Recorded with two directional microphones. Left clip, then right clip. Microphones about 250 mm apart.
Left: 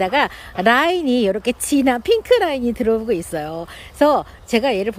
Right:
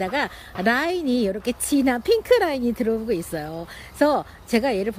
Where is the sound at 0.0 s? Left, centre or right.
Centre.